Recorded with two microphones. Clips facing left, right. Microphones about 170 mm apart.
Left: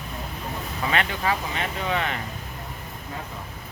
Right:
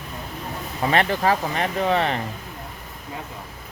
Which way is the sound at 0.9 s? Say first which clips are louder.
Right 6 dB; 35° right (ahead or behind).